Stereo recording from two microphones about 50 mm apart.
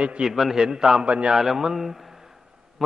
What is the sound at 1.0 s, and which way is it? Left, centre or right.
Speech, right.